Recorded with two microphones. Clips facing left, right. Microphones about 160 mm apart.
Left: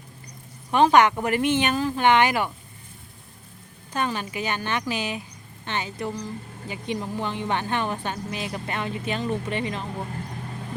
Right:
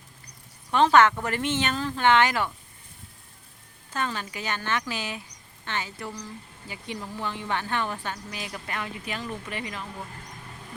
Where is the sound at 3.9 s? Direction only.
15° left (ahead or behind).